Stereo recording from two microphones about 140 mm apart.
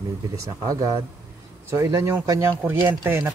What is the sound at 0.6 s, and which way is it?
Speech, 25° right (ahead or behind).